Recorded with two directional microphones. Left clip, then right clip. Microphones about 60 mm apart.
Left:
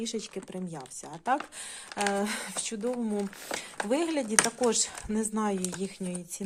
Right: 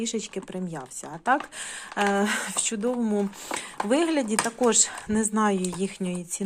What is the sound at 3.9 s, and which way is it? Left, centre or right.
Speech, left.